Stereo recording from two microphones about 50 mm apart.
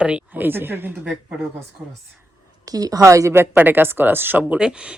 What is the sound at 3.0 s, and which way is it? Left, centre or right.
Speech, right.